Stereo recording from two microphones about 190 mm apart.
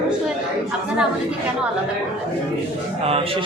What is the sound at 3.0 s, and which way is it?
Speech, 30° right (ahead or behind).